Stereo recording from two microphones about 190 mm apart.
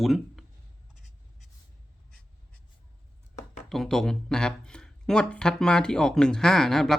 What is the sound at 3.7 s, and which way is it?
Speech, centre (ahead or behind).